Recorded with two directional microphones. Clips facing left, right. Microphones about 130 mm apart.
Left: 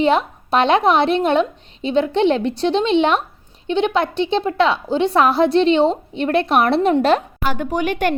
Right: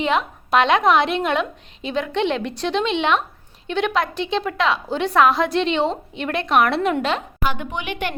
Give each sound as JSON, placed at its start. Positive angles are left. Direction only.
{"t": 0.0, "sound": "a woman's voice", "side_deg": 35}